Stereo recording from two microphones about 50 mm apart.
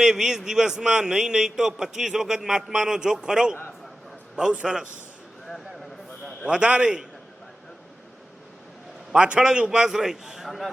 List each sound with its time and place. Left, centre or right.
0.0 s a man's voice: centre
6.4 s a man's voice: right
9.1 s a man's voice: centre